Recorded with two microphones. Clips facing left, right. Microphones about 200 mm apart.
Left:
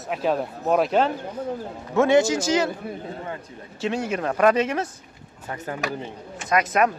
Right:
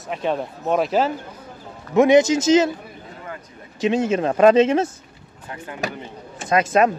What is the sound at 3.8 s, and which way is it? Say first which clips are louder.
Speech: right 6 dB; 20° right (ahead or behind).